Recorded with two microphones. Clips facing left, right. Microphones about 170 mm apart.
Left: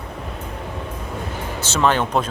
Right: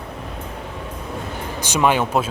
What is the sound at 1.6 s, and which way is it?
Speech, 10° right (ahead or behind).